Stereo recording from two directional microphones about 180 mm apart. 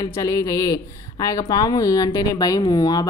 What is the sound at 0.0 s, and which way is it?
A woman's voice, 20° left (ahead or behind).